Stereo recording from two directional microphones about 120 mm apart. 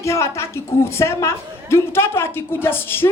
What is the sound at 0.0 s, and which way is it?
A woman's voice, 25° left (ahead or behind).